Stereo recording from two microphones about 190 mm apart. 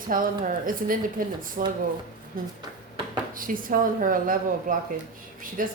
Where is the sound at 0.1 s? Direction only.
45° right (ahead or behind).